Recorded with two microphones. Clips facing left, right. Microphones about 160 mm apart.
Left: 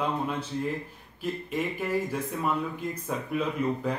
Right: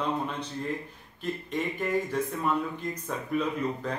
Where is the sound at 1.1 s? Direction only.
5° left (ahead or behind).